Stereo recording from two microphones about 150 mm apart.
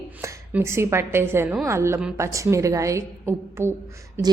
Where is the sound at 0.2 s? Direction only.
15° right (ahead or behind).